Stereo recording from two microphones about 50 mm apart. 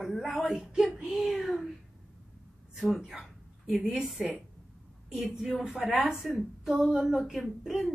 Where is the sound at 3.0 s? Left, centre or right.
Centre.